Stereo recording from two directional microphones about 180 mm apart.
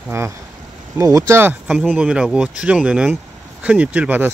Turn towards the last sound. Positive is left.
turn(degrees=-10)  # may be behind; listen again after turning